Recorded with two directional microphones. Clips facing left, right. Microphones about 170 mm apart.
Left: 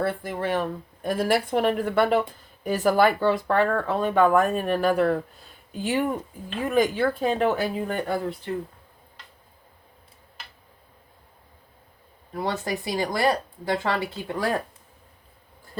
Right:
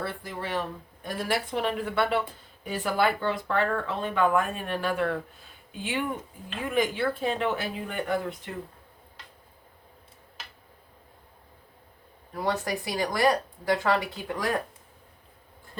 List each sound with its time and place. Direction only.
0.0 s speech: 50° left (ahead or behind); by 8.4 s 35° left (ahead or behind)
12.3 s speech: 25° left (ahead or behind)